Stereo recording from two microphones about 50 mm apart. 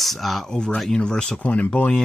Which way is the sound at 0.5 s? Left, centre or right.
Centre.